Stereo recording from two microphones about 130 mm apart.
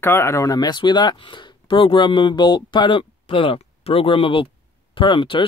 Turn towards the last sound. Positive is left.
turn(degrees=40)  # may be behind; listen again after turning